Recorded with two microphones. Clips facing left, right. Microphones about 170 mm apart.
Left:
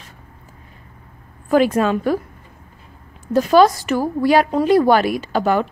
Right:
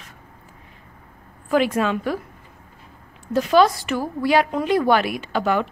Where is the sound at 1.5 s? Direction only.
40° left (ahead or behind).